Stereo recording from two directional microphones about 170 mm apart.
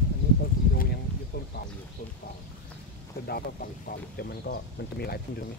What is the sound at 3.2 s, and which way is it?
Speech, 65° left (ahead or behind).